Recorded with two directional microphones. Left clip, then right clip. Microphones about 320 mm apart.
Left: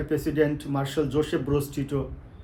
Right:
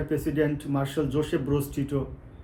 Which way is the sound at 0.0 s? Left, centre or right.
Centre.